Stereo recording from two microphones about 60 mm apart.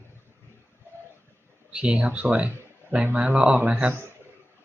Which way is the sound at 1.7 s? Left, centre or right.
Centre.